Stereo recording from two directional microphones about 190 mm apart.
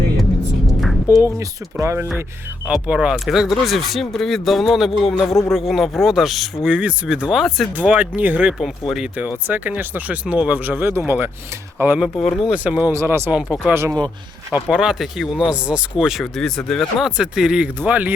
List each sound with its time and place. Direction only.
1.2 s speech: 15° right (ahead or behind)
14.5 s speech: 5° right (ahead or behind)